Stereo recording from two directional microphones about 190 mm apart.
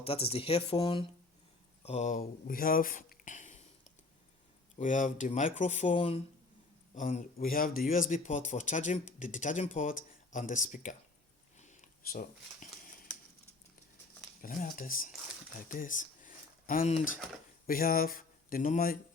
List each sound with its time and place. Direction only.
0.0 s speech: 30° left (ahead or behind)
4.8 s speech: 40° left (ahead or behind)
6.9 s speech: 40° left (ahead or behind)
11.5 s a sound: 40° left (ahead or behind)
14.4 s speech: 45° left (ahead or behind)
15.7 s a sound: 45° left (ahead or behind)
17.7 s speech: 50° left (ahead or behind)